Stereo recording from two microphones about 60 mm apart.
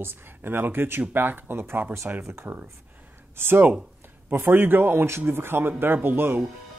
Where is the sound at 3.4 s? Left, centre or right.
Right.